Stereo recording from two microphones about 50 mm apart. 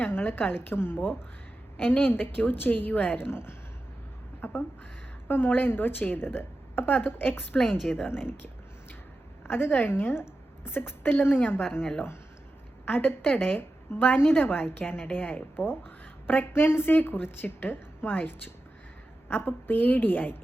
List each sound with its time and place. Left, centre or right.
0.0 s a woman's voice: left
3.2 s a woman's voice: left
4.4 s a sound: left
5.3 s a woman's voice: left
7.6 s a woman's voice: centre
9.5 s a woman's voice: left
11.2 s a woman's voice: left
12.8 s a woman's voice: left
15.5 s a woman's voice: left